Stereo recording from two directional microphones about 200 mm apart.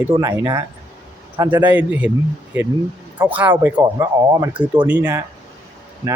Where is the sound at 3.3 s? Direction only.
10° right (ahead or behind).